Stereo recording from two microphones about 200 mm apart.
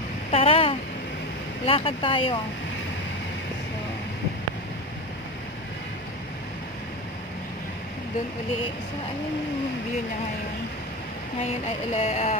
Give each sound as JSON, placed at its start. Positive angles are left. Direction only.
{"t": 0.3, "sound": "a sound", "side_deg": 30}
{"t": 1.7, "sound": "speech", "side_deg": 25}
{"t": 11.9, "sound": "speech", "side_deg": 30}